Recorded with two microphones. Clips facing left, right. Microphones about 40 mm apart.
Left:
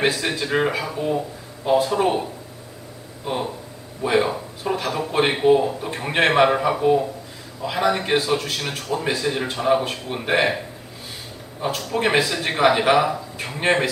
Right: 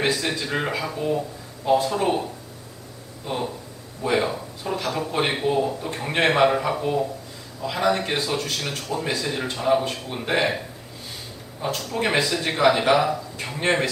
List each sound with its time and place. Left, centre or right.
0.0 s a man's voice: centre
3.3 s a man's voice: centre
12.0 s a man's voice: centre